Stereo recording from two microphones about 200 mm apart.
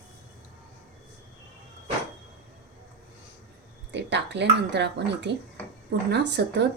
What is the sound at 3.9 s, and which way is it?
Speech, 60° right (ahead or behind).